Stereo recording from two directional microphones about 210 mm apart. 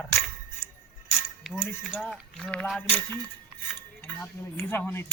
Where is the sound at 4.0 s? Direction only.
10° left (ahead or behind).